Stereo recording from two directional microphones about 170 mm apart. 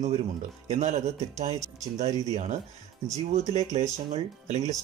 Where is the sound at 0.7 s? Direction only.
40° right (ahead or behind).